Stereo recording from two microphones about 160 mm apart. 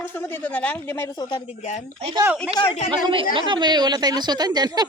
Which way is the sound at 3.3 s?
30° right (ahead or behind).